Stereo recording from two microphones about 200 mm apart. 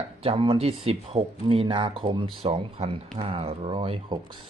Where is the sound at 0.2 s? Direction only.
30° right (ahead or behind).